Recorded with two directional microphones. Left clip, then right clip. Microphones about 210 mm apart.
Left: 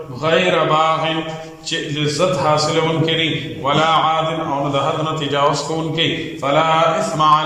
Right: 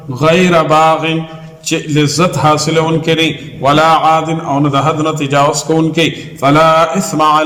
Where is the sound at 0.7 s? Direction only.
45° right (ahead or behind).